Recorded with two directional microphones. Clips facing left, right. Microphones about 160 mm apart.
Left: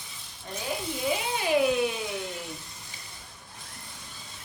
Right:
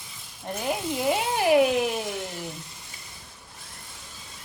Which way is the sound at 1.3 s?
70° right (ahead or behind).